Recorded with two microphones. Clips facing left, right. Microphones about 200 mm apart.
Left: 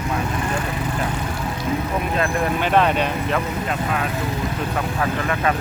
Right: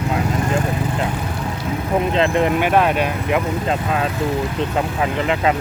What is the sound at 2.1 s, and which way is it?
Speech, 25° right (ahead or behind).